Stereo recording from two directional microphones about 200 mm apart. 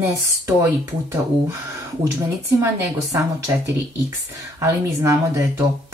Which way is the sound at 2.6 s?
15° right (ahead or behind).